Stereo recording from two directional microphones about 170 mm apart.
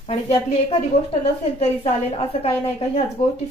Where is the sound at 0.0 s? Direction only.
35° left (ahead or behind).